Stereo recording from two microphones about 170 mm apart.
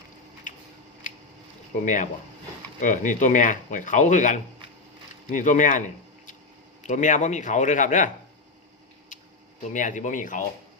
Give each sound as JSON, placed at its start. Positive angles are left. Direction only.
{"t": 1.8, "sound": "speech", "side_deg": 50}
{"t": 9.6, "sound": "speech", "side_deg": 50}